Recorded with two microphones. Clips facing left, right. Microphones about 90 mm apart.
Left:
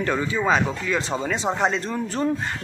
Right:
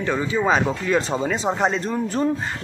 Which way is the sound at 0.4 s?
15° right (ahead or behind).